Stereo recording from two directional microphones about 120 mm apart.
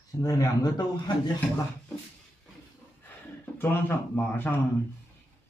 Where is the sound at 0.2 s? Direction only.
30° left (ahead or behind).